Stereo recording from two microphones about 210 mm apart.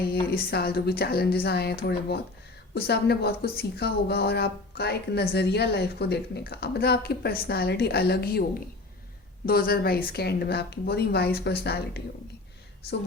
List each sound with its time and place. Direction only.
0.3 s a woman's voice: 50° left (ahead or behind)
9.5 s a woman's voice: 45° left (ahead or behind)